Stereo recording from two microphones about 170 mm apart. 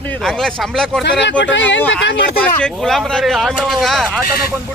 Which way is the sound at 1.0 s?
90° left.